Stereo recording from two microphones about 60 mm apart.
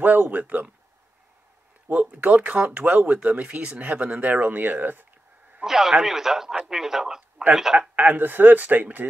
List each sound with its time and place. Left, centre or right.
0.0 s speech: right
1.9 s speech: right
5.6 s a man's voice: centre
7.9 s speech: right